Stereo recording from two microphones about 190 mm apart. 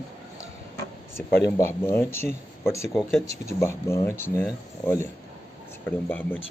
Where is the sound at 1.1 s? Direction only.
15° left (ahead or behind).